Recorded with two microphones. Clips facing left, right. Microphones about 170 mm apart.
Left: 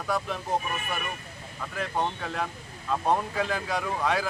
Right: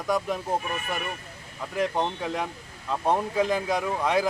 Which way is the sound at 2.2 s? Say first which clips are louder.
Right 2 dB; 10° right (ahead or behind).